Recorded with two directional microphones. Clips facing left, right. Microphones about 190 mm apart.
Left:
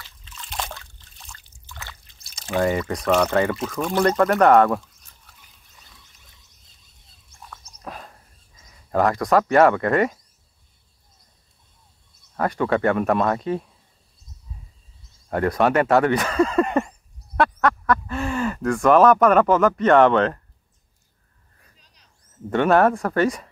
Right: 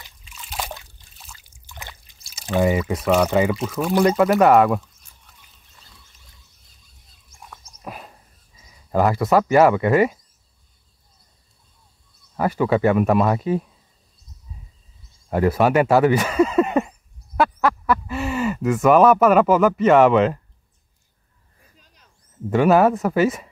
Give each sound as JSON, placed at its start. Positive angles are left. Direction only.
{"t": 0.0, "sound": "trickle", "side_deg": -10}
{"t": 1.7, "sound": "trickle", "side_deg": -15}
{"t": 2.4, "sound": "speech", "side_deg": -15}
{"t": 7.4, "sound": "a sound", "side_deg": -5}
{"t": 8.5, "sound": "speech", "side_deg": -5}
{"t": 12.4, "sound": "speech", "side_deg": -5}
{"t": 15.2, "sound": "speech", "side_deg": -5}
{"t": 21.7, "sound": "a sound", "side_deg": -50}
{"t": 22.5, "sound": "speech", "side_deg": -5}